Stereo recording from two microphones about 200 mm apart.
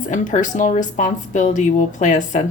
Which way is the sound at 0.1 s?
40° left (ahead or behind).